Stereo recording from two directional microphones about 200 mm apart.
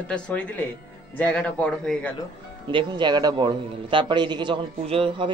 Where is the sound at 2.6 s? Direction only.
25° right (ahead or behind).